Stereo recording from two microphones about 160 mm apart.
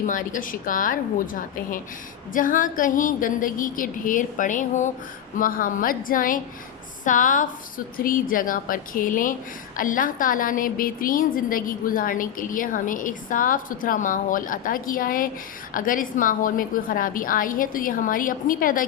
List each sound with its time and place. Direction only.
0.0 s a woman's voice: 55° left (ahead or behind)